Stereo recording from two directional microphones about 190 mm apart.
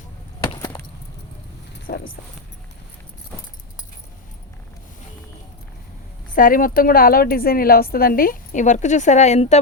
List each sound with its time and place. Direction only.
0.4 s chop: 20° left (ahead or behind)
1.9 s speech: 55° left (ahead or behind)
6.3 s a woman's voice: 45° left (ahead or behind)